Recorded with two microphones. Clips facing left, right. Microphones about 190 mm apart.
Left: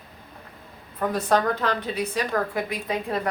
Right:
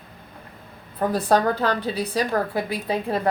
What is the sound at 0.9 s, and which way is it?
A woman's voice, 35° right (ahead or behind).